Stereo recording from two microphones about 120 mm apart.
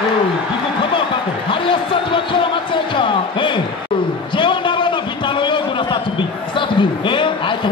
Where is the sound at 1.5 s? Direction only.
45° left (ahead or behind).